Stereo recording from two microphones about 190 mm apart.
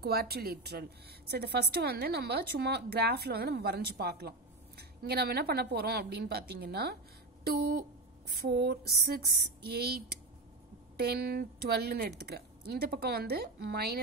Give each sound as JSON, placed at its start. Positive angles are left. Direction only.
{"t": 0.0, "sound": "a woman's voice", "side_deg": -55}